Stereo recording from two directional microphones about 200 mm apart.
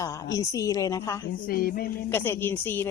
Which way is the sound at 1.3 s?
45° left (ahead or behind).